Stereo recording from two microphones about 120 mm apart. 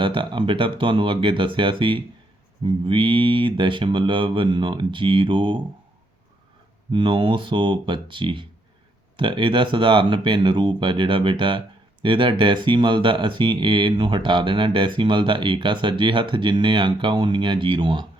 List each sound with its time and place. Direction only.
0.0 s speech: 45° right (ahead or behind)
6.9 s speech: 45° right (ahead or behind)